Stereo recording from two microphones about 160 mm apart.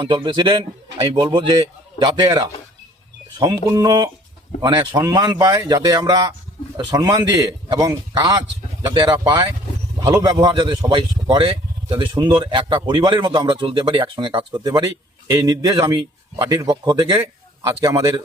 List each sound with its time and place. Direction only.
0.0 s a man's voice: 30° right (ahead or behind)